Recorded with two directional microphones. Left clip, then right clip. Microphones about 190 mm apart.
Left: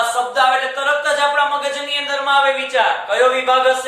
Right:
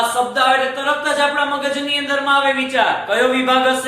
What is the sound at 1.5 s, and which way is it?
A man's voice, 10° left (ahead or behind).